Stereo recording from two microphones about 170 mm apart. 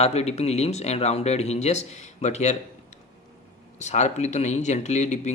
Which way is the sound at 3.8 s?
45° left (ahead or behind).